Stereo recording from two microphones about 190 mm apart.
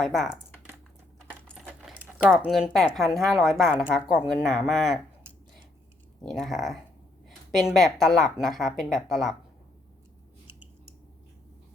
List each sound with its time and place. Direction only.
0.0 s speech: centre (ahead or behind)
1.5 s speech: centre (ahead or behind)
6.2 s speech: centre (ahead or behind)